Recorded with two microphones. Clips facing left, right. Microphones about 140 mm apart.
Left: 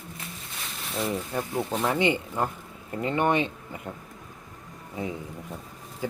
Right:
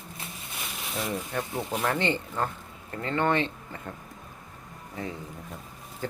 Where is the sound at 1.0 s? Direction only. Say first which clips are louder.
Left 3 dB; 5° left (ahead or behind).